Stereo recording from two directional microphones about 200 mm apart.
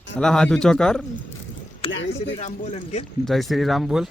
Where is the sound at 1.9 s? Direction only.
65° left (ahead or behind).